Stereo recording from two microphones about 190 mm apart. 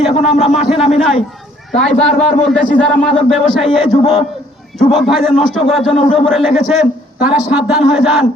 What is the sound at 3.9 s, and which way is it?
Speech, 35° left (ahead or behind).